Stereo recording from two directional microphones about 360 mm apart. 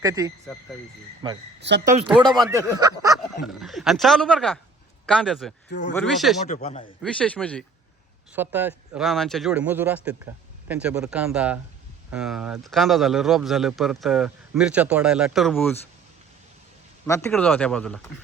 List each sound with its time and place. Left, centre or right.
0.0 s a man's voice: centre
6.5 s a man's voice: centre
7.0 s a man's voice: centre
17.1 s a man's voice: centre